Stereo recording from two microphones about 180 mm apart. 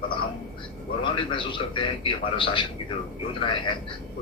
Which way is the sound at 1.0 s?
25° left (ahead or behind).